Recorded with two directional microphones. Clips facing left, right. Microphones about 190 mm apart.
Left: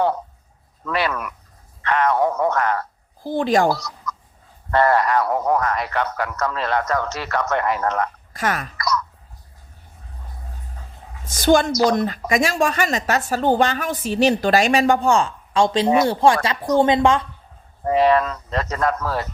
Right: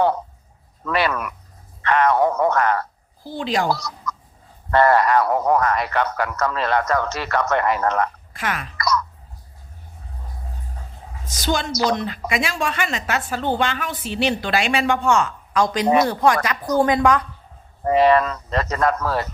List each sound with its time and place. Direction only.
0.9 s speech: 70° right (ahead or behind)
1.8 s a sound: 70° right (ahead or behind)
3.2 s a woman's voice: 50° left (ahead or behind)
3.8 s speech: 70° right (ahead or behind)
8.3 s speech: 40° left (ahead or behind)
11.3 s a woman's voice: 50° left (ahead or behind); by 17.2 s 25° left (ahead or behind)
17.9 s speech: 70° right (ahead or behind)